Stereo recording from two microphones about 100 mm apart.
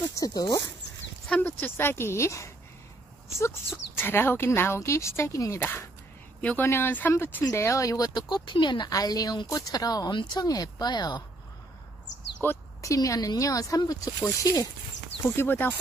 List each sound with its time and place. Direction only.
0.1 s speech: 35° left (ahead or behind)
1.3 s speech: 15° left (ahead or behind)
6.4 s speech: 20° left (ahead or behind); by 11.2 s 45° left (ahead or behind)
12.4 s speech: 30° left (ahead or behind)
15.2 s speech: 20° left (ahead or behind)